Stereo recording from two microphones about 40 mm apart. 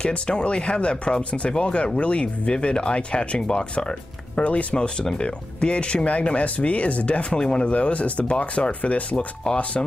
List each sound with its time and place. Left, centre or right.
0.0 s speech: left
4.4 s speech: left
4.7 s speech: left
7.7 s speech: left